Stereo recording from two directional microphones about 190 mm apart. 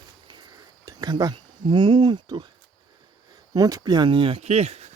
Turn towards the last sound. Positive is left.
turn(degrees=-35)  # may be behind; listen again after turning